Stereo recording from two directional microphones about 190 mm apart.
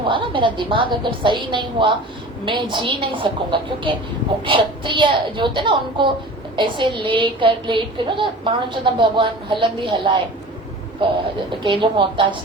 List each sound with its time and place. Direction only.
0.1 s a woman's voice: 25° right (ahead or behind)
11.6 s a woman's voice: 25° right (ahead or behind)